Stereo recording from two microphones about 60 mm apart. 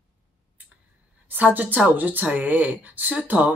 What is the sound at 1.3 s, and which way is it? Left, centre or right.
Speech, right.